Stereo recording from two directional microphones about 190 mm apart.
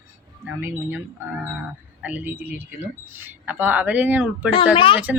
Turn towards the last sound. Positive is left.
turn(degrees=25)  # may be behind; listen again after turning